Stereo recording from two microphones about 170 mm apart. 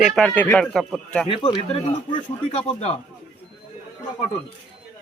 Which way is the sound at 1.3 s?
30° left (ahead or behind).